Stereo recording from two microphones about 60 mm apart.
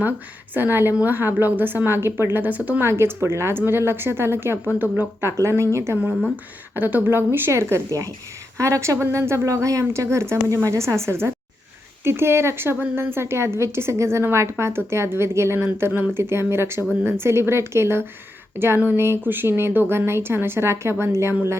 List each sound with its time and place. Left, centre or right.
0.5 s a woman's voice: right
2.8 s a woman's voice: right
5.4 s speech: right
6.7 s a woman's voice: right
7.9 s speech: right
8.5 s speech: right
9.0 s a woman's voice: right